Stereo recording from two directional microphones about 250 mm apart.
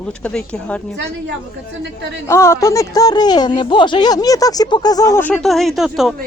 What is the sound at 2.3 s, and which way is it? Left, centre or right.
Speech, centre.